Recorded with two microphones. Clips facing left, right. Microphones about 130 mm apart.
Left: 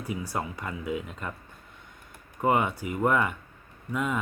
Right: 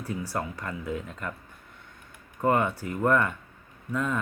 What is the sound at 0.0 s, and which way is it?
Speech, 15° left (ahead or behind).